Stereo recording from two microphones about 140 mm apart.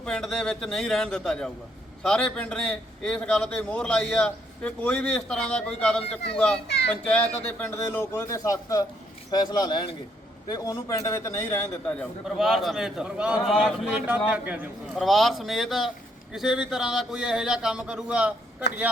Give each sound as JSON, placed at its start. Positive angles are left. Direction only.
{"t": 0.0, "sound": "a man's voice", "side_deg": 5}
{"t": 12.2, "sound": "a man's voice", "side_deg": 0}
{"t": 14.9, "sound": "speech", "side_deg": 0}